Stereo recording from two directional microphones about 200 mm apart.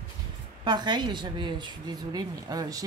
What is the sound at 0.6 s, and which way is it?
A woman's voice, 20° right (ahead or behind).